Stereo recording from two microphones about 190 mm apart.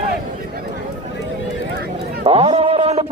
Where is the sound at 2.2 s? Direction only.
30° right (ahead or behind).